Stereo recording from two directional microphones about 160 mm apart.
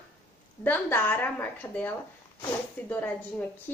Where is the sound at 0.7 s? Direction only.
10° left (ahead or behind).